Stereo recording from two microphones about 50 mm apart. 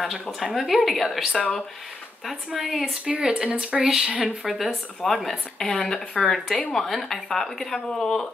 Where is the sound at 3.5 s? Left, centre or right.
Centre.